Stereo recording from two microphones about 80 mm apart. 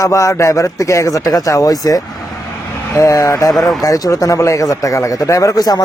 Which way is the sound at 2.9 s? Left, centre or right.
Left.